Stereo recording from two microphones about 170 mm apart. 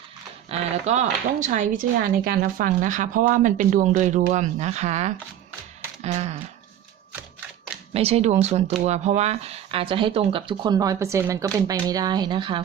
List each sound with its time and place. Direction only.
0.5 s speech: 40° right (ahead or behind)
7.9 s speech: 35° right (ahead or behind)